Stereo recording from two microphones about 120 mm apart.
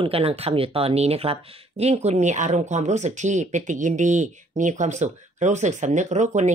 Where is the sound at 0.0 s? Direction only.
55° right (ahead or behind).